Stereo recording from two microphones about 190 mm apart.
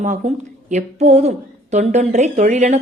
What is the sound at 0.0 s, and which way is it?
A woman's voice, 40° right (ahead or behind).